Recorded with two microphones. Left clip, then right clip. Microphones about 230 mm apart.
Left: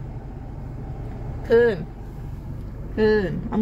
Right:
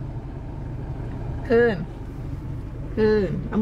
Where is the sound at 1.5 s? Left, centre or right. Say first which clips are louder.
Left 2 dB; centre.